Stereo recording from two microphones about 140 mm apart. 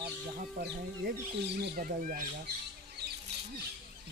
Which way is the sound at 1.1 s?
90° right.